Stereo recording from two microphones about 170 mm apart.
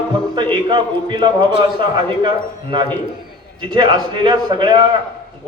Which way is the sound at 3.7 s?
30° right (ahead or behind).